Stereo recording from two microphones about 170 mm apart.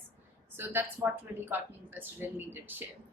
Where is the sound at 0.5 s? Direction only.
10° right (ahead or behind).